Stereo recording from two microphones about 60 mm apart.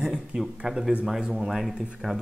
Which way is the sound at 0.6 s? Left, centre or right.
Centre.